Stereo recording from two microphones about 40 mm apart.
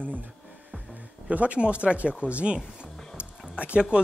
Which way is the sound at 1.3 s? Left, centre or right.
Right.